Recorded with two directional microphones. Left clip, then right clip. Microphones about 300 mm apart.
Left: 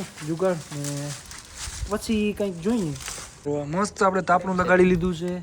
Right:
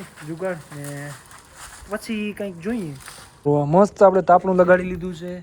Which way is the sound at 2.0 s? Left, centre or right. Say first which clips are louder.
Left 3 dB; centre.